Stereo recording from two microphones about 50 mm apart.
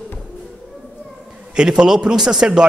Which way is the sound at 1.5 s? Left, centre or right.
Centre.